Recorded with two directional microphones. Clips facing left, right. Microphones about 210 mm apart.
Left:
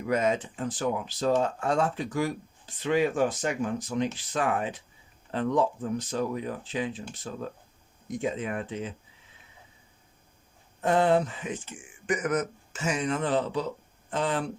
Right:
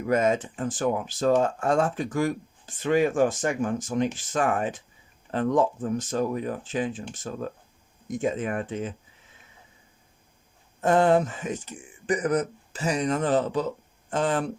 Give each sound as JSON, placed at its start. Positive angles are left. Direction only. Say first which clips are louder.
{"t": 0.1, "sound": "speech", "louder": "right 3 dB", "side_deg": -50}
{"t": 10.8, "sound": "speech", "louder": "right 3 dB", "side_deg": -45}